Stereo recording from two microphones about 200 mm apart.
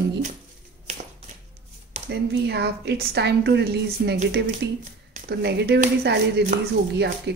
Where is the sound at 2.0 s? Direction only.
60° right (ahead or behind).